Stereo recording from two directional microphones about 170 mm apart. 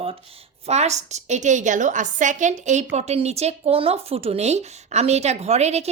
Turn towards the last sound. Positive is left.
turn(degrees=-40)  # may be behind; listen again after turning